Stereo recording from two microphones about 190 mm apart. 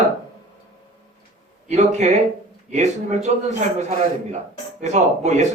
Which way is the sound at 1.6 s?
40° right (ahead or behind).